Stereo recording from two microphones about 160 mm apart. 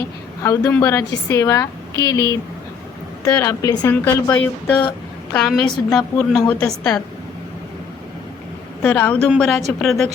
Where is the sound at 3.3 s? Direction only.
15° left (ahead or behind).